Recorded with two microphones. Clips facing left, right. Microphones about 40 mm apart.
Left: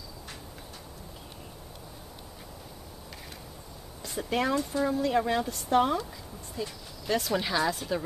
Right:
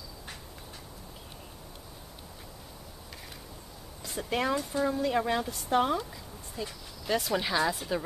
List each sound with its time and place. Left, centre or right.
4.0 s speech: centre